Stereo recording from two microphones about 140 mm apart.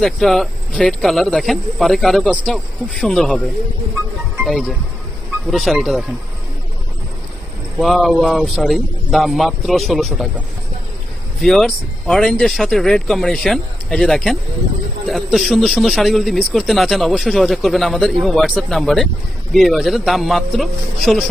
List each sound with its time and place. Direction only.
0.0 s speech: centre (ahead or behind)
4.4 s speech: centre (ahead or behind)
7.8 s speech: centre (ahead or behind)
11.4 s speech: centre (ahead or behind)